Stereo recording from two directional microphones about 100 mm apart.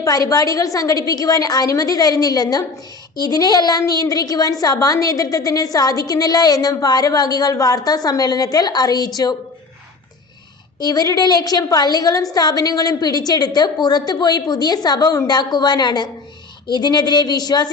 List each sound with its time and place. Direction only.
0.0 s a woman's voice: 35° left (ahead or behind)
10.8 s a woman's voice: 40° left (ahead or behind)